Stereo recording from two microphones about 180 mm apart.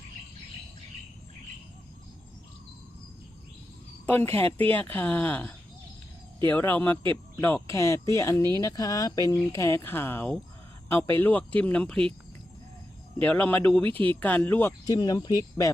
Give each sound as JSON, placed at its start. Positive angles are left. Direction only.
{"t": 4.0, "sound": "speech", "side_deg": 10}
{"t": 8.4, "sound": "speech", "side_deg": -20}
{"t": 8.6, "sound": "speech", "side_deg": 20}
{"t": 13.2, "sound": "speech", "side_deg": 10}
{"t": 14.8, "sound": "speech", "side_deg": 20}